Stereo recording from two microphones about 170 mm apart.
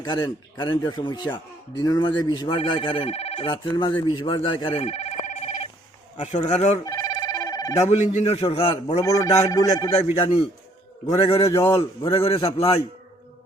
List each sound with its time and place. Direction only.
0.0 s speech: 25° left (ahead or behind)
4.4 s telephone bell ringing: 35° left (ahead or behind)
6.1 s a man's voice: 40° left (ahead or behind)
6.8 s telephone bell ringing: 20° left (ahead or behind)
7.9 s a man's voice: 45° left (ahead or behind)
9.0 s speech: 20° left (ahead or behind)
11.2 s a man's voice: 35° left (ahead or behind)
11.7 s speech: 20° left (ahead or behind)
12.2 s a man's voice: 35° left (ahead or behind)